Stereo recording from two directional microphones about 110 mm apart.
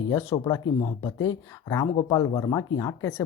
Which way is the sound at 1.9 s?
40° left (ahead or behind).